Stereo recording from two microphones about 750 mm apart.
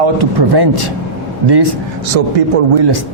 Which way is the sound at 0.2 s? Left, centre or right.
Right.